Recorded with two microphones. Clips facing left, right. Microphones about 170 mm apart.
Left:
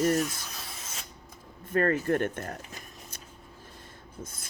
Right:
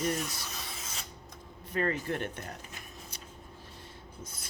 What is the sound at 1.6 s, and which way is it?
Speech, 50° left (ahead or behind).